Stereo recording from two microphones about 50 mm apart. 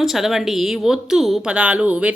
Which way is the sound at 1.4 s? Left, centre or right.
Right.